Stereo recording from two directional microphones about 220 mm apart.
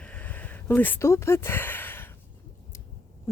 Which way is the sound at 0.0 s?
5° left (ahead or behind).